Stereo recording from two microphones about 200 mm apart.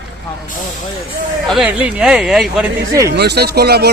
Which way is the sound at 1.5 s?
5° right (ahead or behind).